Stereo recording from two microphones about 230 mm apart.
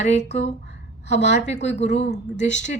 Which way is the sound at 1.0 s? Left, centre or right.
Left.